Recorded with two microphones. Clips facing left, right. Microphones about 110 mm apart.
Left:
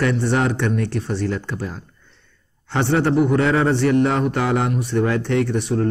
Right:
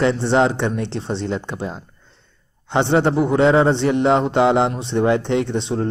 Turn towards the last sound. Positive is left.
turn(degrees=-25)  # may be behind; listen again after turning